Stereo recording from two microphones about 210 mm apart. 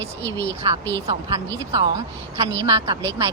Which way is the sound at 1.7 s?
30° right (ahead or behind).